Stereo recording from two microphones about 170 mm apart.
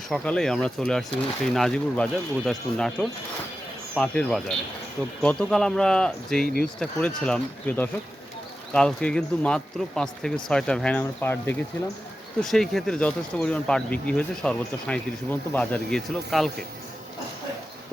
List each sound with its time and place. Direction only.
0.1 s speech: 5° left (ahead or behind)